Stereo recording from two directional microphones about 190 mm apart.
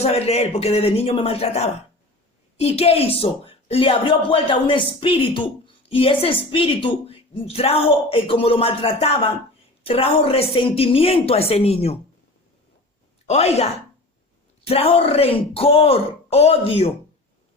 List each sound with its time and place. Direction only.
0.0 s speech: 35° left (ahead or behind)
13.2 s speech: 35° left (ahead or behind)